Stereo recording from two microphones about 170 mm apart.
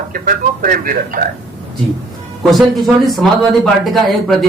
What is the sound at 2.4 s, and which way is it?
Speech, centre (ahead or behind).